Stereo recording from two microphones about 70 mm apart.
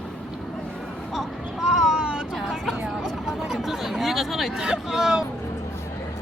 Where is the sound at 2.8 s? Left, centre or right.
Centre.